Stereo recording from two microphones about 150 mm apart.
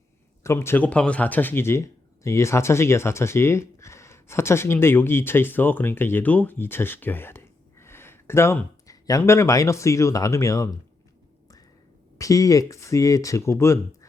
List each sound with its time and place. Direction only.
0.4 s speech: 15° left (ahead or behind)
12.1 s speech: 20° left (ahead or behind)